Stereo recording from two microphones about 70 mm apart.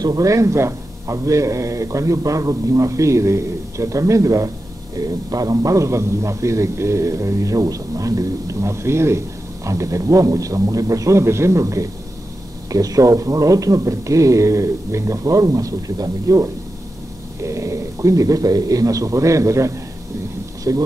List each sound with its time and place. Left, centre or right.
0.0 s a man's voice: right
4.9 s a man's voice: right